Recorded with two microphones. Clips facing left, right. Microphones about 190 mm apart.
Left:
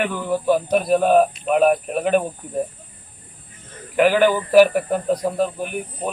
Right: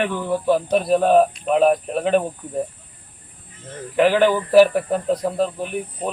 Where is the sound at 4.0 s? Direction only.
Centre (ahead or behind).